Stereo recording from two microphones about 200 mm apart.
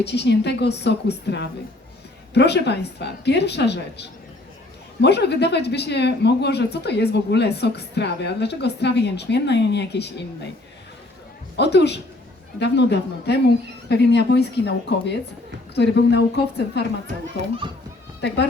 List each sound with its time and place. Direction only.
0.0 s speech: 55° left (ahead or behind)
11.5 s speech: 60° left (ahead or behind)
17.4 s a child's voice: 35° right (ahead or behind)